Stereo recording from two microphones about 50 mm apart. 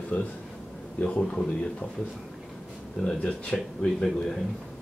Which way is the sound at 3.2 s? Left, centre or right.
Centre.